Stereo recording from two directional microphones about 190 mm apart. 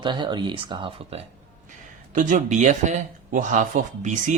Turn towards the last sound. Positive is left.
turn(degrees=-40)  # may be behind; listen again after turning